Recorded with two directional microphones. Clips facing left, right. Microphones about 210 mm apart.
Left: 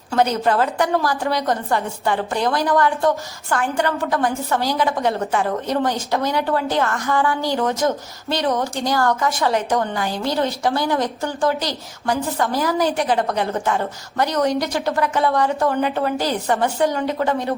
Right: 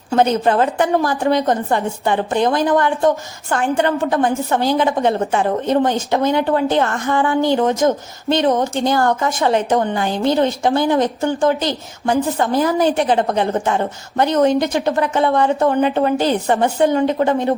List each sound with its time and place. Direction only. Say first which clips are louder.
0.1 s a woman's voice: right 3 dB; 20° right (ahead or behind)